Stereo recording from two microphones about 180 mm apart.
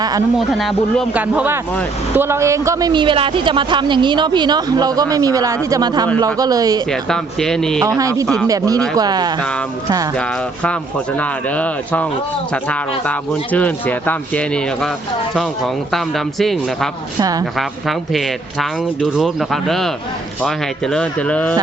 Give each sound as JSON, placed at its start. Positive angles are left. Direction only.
{"t": 0.3, "sound": "a man's voice", "side_deg": 0}
{"t": 6.9, "sound": "a man's voice", "side_deg": 5}
{"t": 7.8, "sound": "speech", "side_deg": -20}
{"t": 10.2, "sound": "a man's voice", "side_deg": 5}
{"t": 17.2, "sound": "speech", "side_deg": -20}
{"t": 17.6, "sound": "a man's voice", "side_deg": 0}